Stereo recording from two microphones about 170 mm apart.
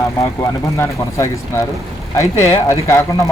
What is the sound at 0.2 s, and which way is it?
Speech, 15° left (ahead or behind).